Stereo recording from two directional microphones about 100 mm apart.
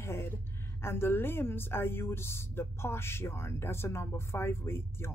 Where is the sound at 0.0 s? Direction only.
25° left (ahead or behind).